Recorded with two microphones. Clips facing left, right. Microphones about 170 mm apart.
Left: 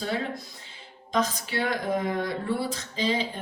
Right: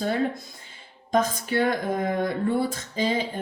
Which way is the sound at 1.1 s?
50° right (ahead or behind).